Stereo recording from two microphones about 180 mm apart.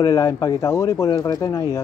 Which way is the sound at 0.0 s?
20° left (ahead or behind).